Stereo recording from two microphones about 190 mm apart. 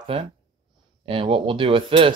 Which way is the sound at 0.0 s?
30° right (ahead or behind).